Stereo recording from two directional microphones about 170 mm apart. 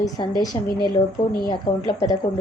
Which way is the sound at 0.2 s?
30° left (ahead or behind).